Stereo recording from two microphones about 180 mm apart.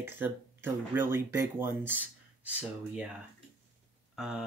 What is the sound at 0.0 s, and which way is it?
Speech, 10° right (ahead or behind).